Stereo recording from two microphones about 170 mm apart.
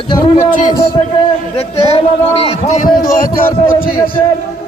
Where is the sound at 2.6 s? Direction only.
55° left (ahead or behind).